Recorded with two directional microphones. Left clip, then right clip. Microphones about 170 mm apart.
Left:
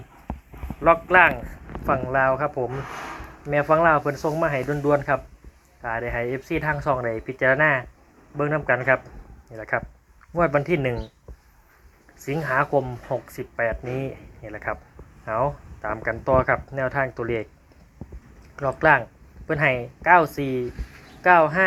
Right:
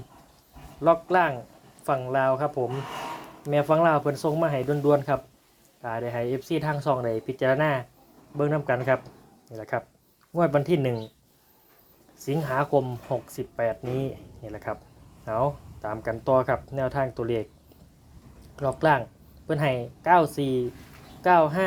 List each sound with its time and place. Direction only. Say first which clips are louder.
1.9 s speech: left 3 dB; 5° right (ahead or behind)
2.6 s speech: left 1 dB; 25° right (ahead or behind)
3.4 s speech: left 3 dB; 5° right (ahead or behind)
12.4 s speech: left 3 dB; 5° right (ahead or behind)
18.5 s speech: left 4 dB; centre (ahead or behind)